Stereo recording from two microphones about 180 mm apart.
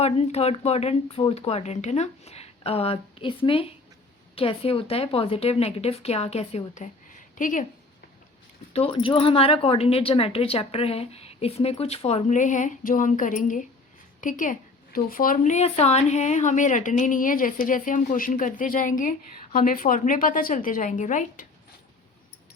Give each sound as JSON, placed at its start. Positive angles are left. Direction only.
{"t": 0.0, "sound": "speech", "side_deg": 35}
{"t": 8.7, "sound": "a woman's voice", "side_deg": 30}